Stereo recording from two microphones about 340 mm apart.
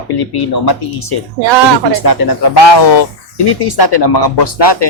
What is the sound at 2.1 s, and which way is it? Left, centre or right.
Speech, left.